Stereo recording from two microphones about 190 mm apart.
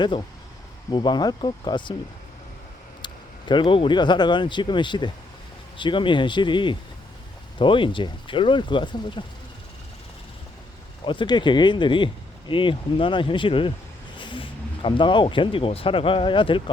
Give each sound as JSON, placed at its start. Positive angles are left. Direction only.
{"t": 0.9, "sound": "speech", "side_deg": 25}
{"t": 3.0, "sound": "speech", "side_deg": 25}
{"t": 11.0, "sound": "speech", "side_deg": 25}